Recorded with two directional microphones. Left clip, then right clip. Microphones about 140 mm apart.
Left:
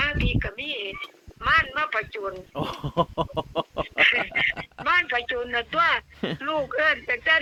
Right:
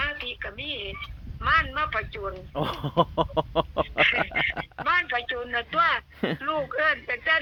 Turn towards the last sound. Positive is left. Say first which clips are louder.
# left 2 dB
turn(degrees=35)  # may be behind; listen again after turning